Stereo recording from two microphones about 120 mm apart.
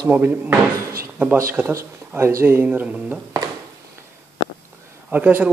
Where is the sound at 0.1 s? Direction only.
15° right (ahead or behind).